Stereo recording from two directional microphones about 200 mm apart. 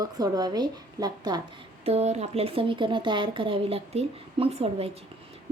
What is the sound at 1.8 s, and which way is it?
Speech, 30° right (ahead or behind).